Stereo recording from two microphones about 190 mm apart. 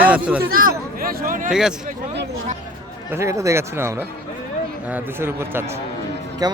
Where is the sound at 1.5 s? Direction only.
5° right (ahead or behind).